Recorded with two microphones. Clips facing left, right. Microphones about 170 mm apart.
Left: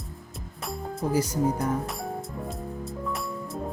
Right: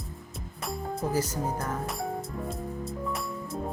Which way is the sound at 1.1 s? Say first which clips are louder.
Left 8 dB; 15° left (ahead or behind).